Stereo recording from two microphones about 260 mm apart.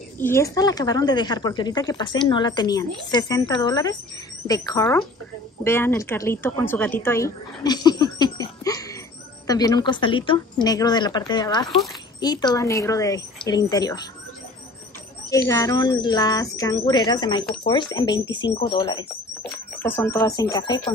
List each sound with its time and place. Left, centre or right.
0.2 s a woman's voice: centre
15.2 s speech: centre